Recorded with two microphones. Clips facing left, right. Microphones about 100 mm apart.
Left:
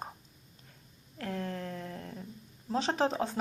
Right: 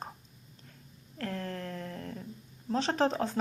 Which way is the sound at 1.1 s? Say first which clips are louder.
Even; 10° left (ahead or behind).